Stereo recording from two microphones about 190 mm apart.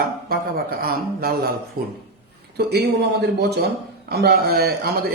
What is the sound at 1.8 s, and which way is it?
A man's voice, 55° right (ahead or behind).